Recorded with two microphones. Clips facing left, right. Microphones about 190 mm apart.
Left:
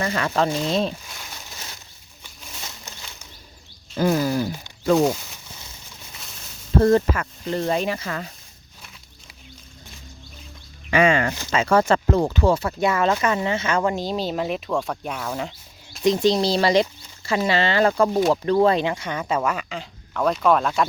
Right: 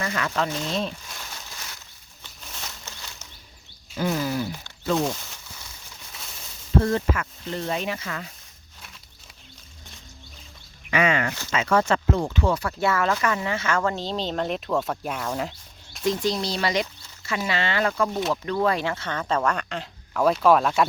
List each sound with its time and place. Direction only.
0.0 s speech: 30° left (ahead or behind)
2.2 s a sound: 10° left (ahead or behind)
3.9 s speech: 40° left (ahead or behind)
6.8 s speech: 40° left (ahead or behind)
10.9 s speech: 30° left (ahead or behind)
12.5 s speech: 20° left (ahead or behind); by 16.0 s centre (ahead or behind)
16.0 s speech: 25° left (ahead or behind); by 20.8 s 5° right (ahead or behind)